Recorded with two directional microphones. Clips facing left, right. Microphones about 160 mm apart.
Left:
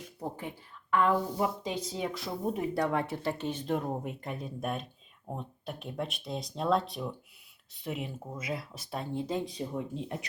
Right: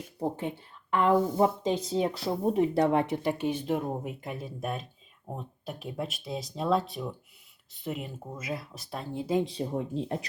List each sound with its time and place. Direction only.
0.2 s speech: 25° right (ahead or behind); by 9.4 s 5° right (ahead or behind)
9.4 s speech: 30° right (ahead or behind)